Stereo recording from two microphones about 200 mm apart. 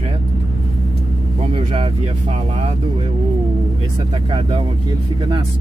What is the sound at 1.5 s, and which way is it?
Speech, 30° right (ahead or behind).